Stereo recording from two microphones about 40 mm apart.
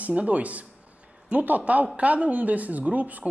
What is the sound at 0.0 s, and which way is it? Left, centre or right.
Speech, right.